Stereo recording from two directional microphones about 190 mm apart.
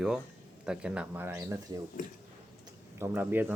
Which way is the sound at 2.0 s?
40° left (ahead or behind).